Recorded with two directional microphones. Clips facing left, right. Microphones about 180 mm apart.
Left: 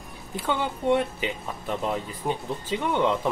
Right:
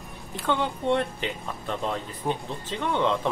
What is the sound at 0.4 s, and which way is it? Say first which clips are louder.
Speech: right 1 dB; 10° left (ahead or behind).